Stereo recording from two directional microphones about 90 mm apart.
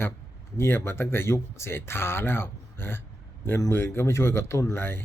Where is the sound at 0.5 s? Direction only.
30° left (ahead or behind).